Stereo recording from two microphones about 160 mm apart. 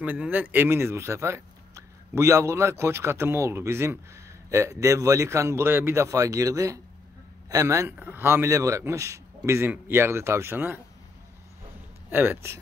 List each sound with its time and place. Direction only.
0.0 s speech: 10° right (ahead or behind)
12.1 s speech: 10° right (ahead or behind)